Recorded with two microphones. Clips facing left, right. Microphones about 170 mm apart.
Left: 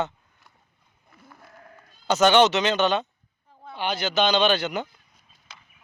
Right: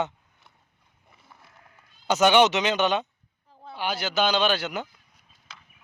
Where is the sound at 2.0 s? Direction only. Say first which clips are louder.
Left 1 dB; 10° right (ahead or behind).